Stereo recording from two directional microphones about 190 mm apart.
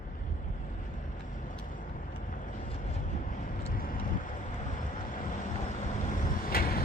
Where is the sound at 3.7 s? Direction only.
50° left (ahead or behind).